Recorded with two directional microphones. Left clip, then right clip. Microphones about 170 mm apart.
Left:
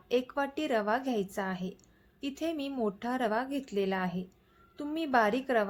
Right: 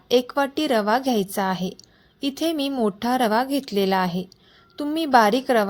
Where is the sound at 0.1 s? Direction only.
45° right (ahead or behind).